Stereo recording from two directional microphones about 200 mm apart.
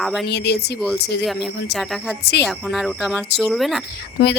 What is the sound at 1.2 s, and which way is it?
Speech, centre (ahead or behind).